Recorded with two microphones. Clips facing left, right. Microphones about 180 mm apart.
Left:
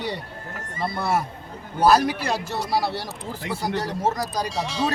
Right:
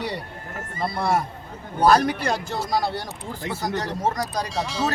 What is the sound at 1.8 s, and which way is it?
Speech, 5° left (ahead or behind).